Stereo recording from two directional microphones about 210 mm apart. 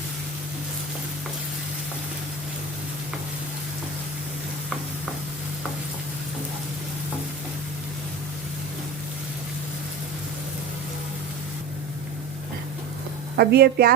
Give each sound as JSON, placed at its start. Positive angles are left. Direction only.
{"t": 13.3, "sound": "a woman's voice", "side_deg": -50}